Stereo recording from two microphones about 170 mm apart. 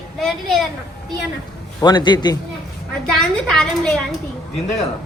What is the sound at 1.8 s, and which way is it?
Speech, 25° left (ahead or behind).